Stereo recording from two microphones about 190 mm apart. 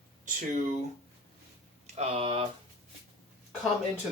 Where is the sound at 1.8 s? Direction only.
35° right (ahead or behind).